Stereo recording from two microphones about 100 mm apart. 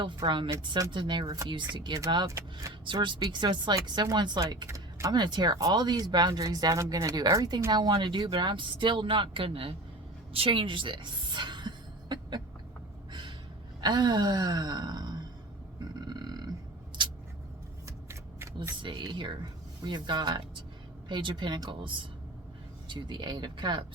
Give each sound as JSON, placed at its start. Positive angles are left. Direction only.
{"t": 0.3, "sound": "speech", "side_deg": -55}
{"t": 1.2, "sound": "speech", "side_deg": -35}
{"t": 1.9, "sound": "speech", "side_deg": -50}
{"t": 2.2, "sound": "speech", "side_deg": -30}
{"t": 2.8, "sound": "speech", "side_deg": -50}
{"t": 4.4, "sound": "speech", "side_deg": -30}
{"t": 5.1, "sound": "speech", "side_deg": -45}
{"t": 10.3, "sound": "a sound", "side_deg": -65}
{"t": 13.8, "sound": "speech", "side_deg": -45}
{"t": 15.8, "sound": "burping", "side_deg": -45}
{"t": 17.0, "sound": "a sound", "side_deg": -50}
{"t": 17.8, "sound": "a sound", "side_deg": -25}
{"t": 18.8, "sound": "speech", "side_deg": -50}